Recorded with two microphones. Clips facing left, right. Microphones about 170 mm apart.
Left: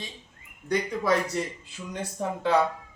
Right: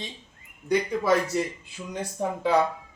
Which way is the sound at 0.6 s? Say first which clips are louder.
Right 2 dB; 5° right (ahead or behind).